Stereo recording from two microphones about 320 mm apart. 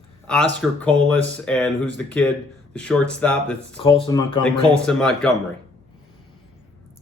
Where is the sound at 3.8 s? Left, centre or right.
Centre.